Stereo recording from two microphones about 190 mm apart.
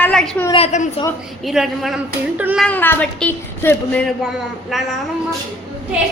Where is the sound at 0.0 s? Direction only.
5° left (ahead or behind).